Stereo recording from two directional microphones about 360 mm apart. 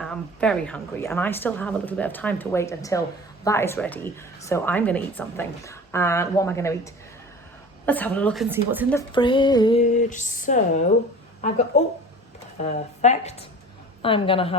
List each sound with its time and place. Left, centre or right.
0.0 s a woman's voice: centre
7.9 s speech: centre
9.0 s a woman's voice: centre